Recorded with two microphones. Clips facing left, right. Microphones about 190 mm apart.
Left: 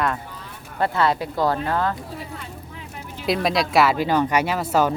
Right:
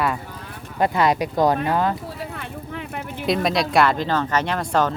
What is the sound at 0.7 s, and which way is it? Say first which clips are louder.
Speech: right 2 dB; 15° right (ahead or behind).